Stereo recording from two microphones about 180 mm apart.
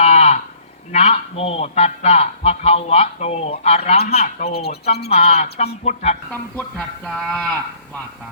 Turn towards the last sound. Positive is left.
turn(degrees=-5)  # may be behind; listen again after turning